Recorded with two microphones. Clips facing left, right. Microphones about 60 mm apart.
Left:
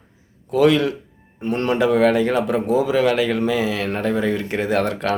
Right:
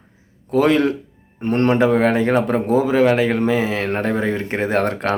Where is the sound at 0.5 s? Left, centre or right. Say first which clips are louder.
Even; right.